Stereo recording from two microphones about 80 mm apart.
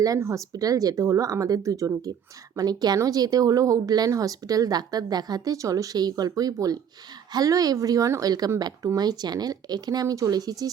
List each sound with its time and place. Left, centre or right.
0.2 s speech: right
0.5 s speech: right
2.6 s speech: right